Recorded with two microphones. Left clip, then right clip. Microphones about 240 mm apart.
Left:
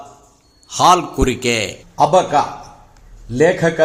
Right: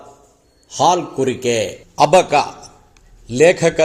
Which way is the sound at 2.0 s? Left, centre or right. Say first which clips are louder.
Right 1 dB; right.